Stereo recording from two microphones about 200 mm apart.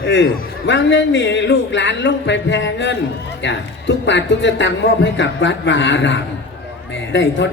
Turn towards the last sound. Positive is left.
turn(degrees=65)  # may be behind; listen again after turning